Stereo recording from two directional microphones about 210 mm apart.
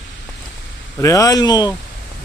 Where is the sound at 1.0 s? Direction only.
15° left (ahead or behind).